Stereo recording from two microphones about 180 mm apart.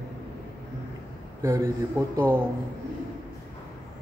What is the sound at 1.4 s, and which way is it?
A man's voice, 15° right (ahead or behind).